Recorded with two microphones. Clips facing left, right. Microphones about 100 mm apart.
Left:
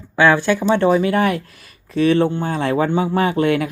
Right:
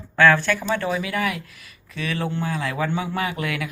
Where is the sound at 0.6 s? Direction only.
30° left (ahead or behind).